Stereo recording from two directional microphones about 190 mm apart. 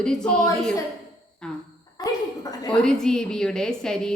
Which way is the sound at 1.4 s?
5° left (ahead or behind).